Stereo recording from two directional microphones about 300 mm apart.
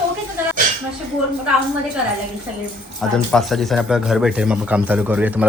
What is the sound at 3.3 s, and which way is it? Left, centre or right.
Speech, centre.